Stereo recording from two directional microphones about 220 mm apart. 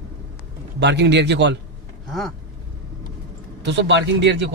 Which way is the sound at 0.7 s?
50° right (ahead or behind).